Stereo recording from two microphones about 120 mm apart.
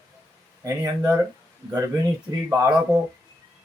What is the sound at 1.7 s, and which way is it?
Speech, 30° right (ahead or behind).